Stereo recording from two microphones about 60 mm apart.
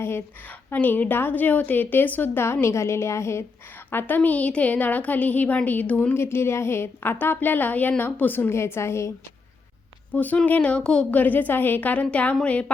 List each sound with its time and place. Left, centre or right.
0.7 s a woman's voice: left
3.9 s a woman's voice: left
6.1 s a woman's voice: left
10.1 s a woman's voice: left
11.1 s a woman's voice: left